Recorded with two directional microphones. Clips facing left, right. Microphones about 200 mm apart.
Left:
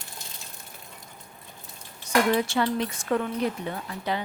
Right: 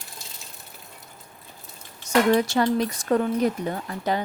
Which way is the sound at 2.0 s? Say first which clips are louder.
Right 3 dB; 40° right (ahead or behind).